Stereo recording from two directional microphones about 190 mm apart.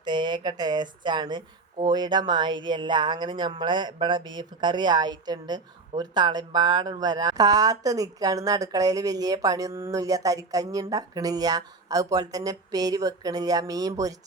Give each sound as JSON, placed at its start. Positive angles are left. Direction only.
{"t": 0.0, "sound": "speech", "side_deg": -25}